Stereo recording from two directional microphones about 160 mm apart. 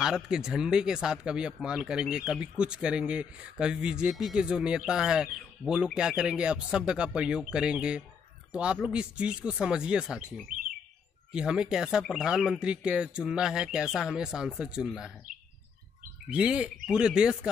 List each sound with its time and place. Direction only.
0.0 s speech: 5° right (ahead or behind)
16.3 s speech: 5° right (ahead or behind)